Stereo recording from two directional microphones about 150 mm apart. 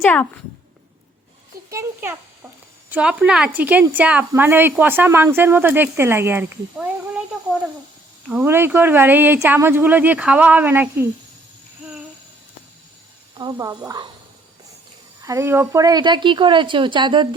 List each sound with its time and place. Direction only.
0.0 s a child's voice: 10° left (ahead or behind)
1.7 s a child's voice: 20° right (ahead or behind)
8.3 s speech: 15° right (ahead or behind)
13.3 s speech: 25° right (ahead or behind)
15.2 s a woman's voice: 20° right (ahead or behind)